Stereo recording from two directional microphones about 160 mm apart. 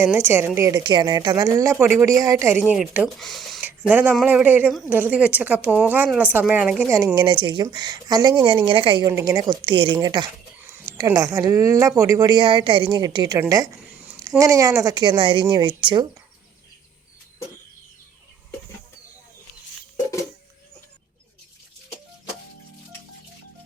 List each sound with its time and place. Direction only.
0.0 s a woman's voice: 15° right (ahead or behind)
2.6 s a woman's voice: 5° right (ahead or behind)
3.2 s a sound: centre (ahead or behind)
3.7 s a woman's voice: 10° right (ahead or behind)
7.2 s a woman's voice: 30° right (ahead or behind)
9.0 s a woman's voice: 20° right (ahead or behind)